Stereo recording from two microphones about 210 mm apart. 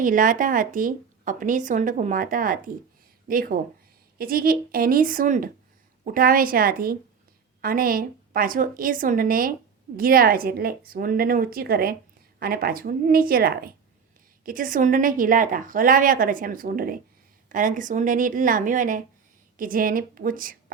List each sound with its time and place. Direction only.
0.0 s a woman's voice: 40° right (ahead or behind)